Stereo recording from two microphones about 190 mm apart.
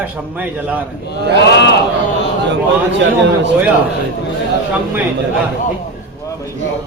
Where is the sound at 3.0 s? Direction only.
65° right (ahead or behind).